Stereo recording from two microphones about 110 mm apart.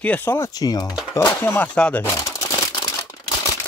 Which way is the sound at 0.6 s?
35° left (ahead or behind).